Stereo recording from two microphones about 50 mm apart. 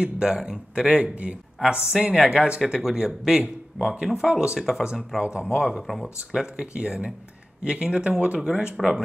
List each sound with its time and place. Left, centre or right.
0.0 s speech: centre
1.1 s speech: right
2.6 s speech: centre